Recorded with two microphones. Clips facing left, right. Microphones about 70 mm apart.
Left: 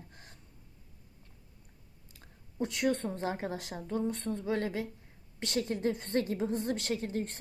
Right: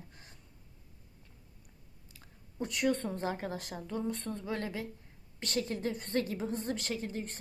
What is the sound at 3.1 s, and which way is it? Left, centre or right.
A woman's voice, left.